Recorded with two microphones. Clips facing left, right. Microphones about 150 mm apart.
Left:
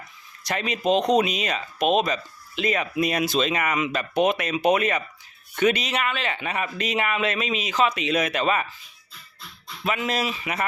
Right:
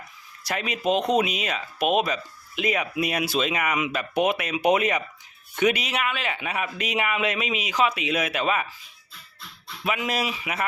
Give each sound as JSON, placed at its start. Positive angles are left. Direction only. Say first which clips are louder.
{"t": 0.4, "sound": "speech", "louder": "left 2 dB", "side_deg": -5}
{"t": 9.8, "sound": "speech", "louder": "left 1 dB", "side_deg": -10}